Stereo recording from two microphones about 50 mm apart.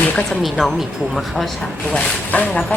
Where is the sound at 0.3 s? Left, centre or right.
Centre.